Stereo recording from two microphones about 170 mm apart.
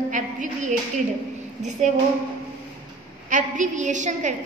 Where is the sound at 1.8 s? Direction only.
45° right (ahead or behind).